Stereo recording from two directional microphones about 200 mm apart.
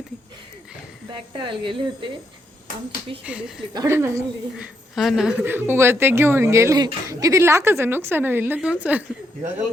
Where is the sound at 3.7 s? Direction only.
15° right (ahead or behind).